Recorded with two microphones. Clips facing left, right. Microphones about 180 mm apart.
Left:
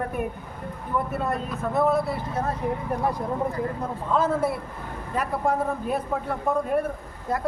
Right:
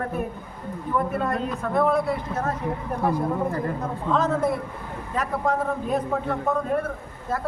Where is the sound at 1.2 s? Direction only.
5° left (ahead or behind).